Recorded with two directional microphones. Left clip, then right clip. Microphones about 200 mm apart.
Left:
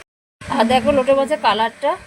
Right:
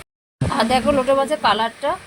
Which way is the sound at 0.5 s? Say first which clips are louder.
Left 2 dB; centre (ahead or behind).